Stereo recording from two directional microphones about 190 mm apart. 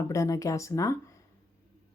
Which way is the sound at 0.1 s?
15° left (ahead or behind).